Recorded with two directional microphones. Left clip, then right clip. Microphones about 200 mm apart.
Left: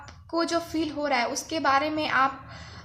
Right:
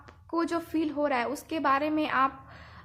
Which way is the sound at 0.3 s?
45° right (ahead or behind).